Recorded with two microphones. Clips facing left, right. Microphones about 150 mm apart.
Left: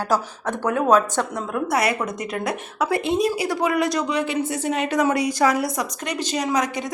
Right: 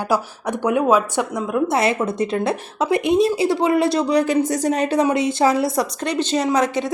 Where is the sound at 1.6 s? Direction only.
25° right (ahead or behind).